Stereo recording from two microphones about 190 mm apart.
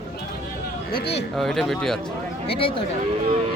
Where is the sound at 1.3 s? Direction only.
Centre (ahead or behind).